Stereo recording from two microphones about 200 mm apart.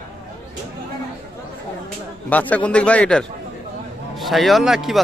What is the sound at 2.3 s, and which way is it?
A man's voice, 10° left (ahead or behind).